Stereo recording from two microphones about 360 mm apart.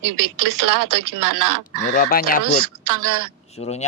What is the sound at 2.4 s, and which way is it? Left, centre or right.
Speech, right.